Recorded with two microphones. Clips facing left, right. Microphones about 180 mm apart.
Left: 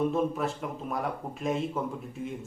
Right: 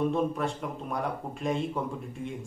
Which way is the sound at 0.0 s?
Centre (ahead or behind).